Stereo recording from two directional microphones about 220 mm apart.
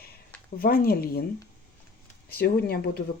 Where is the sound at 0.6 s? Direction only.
40° left (ahead or behind).